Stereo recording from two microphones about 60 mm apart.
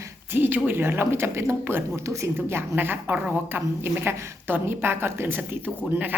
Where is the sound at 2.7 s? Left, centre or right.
Right.